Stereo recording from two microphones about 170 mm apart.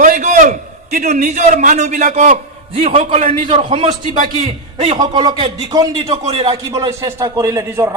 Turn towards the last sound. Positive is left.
turn(degrees=-20)  # may be behind; listen again after turning